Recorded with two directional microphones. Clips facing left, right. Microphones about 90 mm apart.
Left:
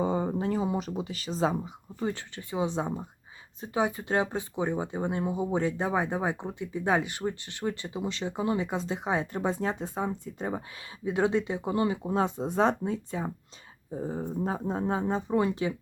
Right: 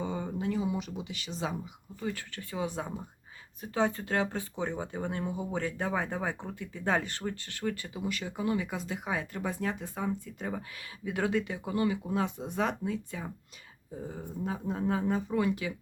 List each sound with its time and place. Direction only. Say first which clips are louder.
0.0 s speech: left 6 dB; 35° left (ahead or behind)
2.3 s speech: left 5 dB; 20° left (ahead or behind)